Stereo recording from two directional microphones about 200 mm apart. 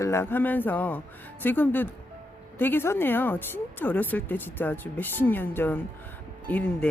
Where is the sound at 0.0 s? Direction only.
15° left (ahead or behind).